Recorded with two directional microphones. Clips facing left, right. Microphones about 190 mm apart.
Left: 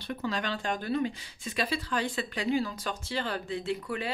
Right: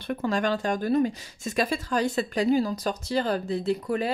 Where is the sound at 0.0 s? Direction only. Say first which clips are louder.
Right 7 dB; 50° right (ahead or behind).